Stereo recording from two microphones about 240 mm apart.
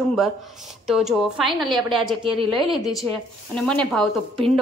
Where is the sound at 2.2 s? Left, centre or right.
Right.